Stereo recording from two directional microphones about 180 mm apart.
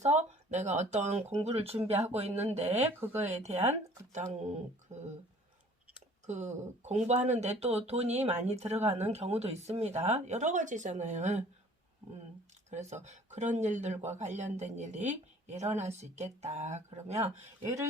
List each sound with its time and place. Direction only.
0.0 s speech: 40° right (ahead or behind)
2.8 s speech: 10° right (ahead or behind)
3.2 s speech: 40° right (ahead or behind)
6.2 s speech: 40° right (ahead or behind)
12.7 s speech: 40° right (ahead or behind)